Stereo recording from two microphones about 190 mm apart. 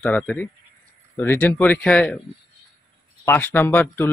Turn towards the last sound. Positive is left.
turn(degrees=10)  # may be behind; listen again after turning